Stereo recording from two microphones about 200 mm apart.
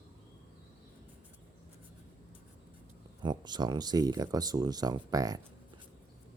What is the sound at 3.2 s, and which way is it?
Speech, 20° right (ahead or behind).